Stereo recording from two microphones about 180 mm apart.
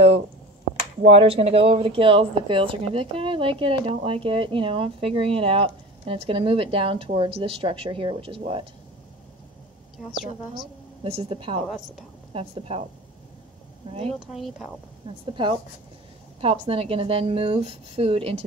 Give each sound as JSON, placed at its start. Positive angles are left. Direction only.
{"t": 1.0, "sound": "speech", "side_deg": -30}
{"t": 11.1, "sound": "speech", "side_deg": -30}
{"t": 14.2, "sound": "speech", "side_deg": 0}
{"t": 15.2, "sound": "speech", "side_deg": -25}